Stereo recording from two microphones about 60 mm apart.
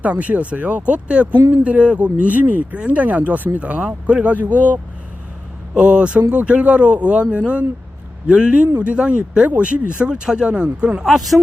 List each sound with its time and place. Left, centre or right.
0.0 s speech: right
11.0 s speech: centre